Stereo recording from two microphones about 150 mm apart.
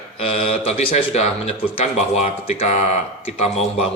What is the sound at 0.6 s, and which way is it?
A man's voice, 45° left (ahead or behind).